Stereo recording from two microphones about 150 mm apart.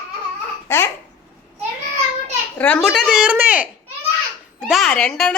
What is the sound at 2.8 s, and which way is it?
A woman's voice, 5° right (ahead or behind).